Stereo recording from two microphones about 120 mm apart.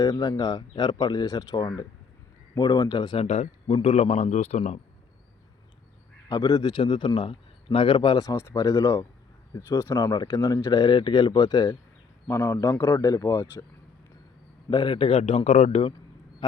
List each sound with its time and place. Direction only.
0.0 s a man's voice: 30° left (ahead or behind)
3.2 s speech: 60° left (ahead or behind)
6.2 s a man's voice: 30° left (ahead or behind)
12.3 s a man's voice: 20° left (ahead or behind)
14.7 s speech: 40° left (ahead or behind); by 15.9 s 60° left (ahead or behind)
16.4 s a man's voice: 35° left (ahead or behind)